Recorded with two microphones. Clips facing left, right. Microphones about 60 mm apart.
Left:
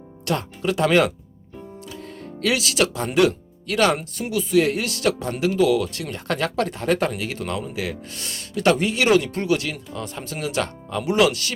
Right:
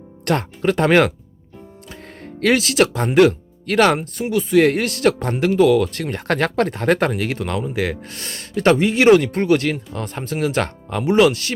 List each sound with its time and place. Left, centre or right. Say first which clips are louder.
0.3 s speech: right 5 dB; right
2.4 s speech: right 5 dB; right